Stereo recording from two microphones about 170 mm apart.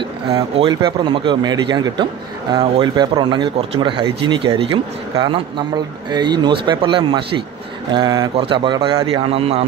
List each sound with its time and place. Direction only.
0.3 s a man's voice: 30° right (ahead or behind)